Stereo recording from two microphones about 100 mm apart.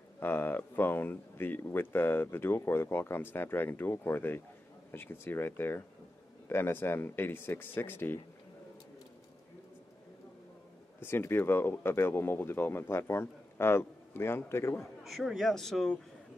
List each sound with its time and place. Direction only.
0.2 s speech: 20° left (ahead or behind)
11.0 s speech: 25° left (ahead or behind)
15.0 s a man's voice: centre (ahead or behind)